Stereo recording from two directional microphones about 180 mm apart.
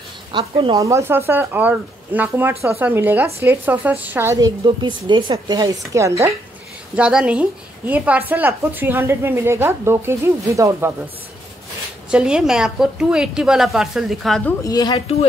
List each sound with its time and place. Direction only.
0.3 s speech: 30° right (ahead or behind)
0.7 s a woman's voice: 15° right (ahead or behind)
4.6 s a woman's voice: 25° right (ahead or behind)
7.0 s a woman's voice: 5° right (ahead or behind)
12.1 s a woman's voice: 5° right (ahead or behind)
14.6 s speech: 20° left (ahead or behind)